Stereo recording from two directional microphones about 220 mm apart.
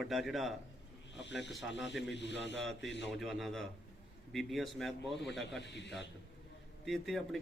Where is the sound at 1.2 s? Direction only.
55° left (ahead or behind).